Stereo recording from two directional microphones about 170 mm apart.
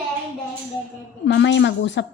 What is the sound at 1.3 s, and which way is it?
Speech, 90° left.